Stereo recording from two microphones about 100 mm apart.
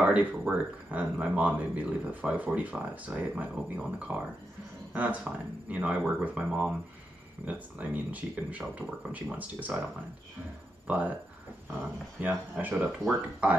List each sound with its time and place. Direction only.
0.0 s speech: 15° right (ahead or behind)
12.2 s speech: 15° right (ahead or behind)